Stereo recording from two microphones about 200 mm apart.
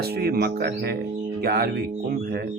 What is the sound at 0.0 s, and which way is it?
Speech, 50° right (ahead or behind).